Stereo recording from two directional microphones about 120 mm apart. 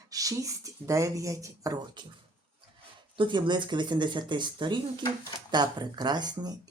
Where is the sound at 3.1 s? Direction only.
40° right (ahead or behind).